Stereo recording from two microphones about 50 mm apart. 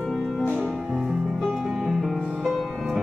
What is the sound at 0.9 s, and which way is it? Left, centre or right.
Music, centre.